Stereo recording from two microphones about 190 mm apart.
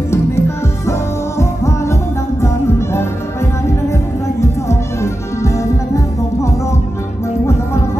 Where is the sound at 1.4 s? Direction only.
15° left (ahead or behind).